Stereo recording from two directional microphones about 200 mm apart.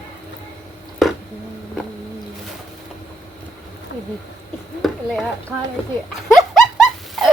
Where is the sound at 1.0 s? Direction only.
Centre (ahead or behind).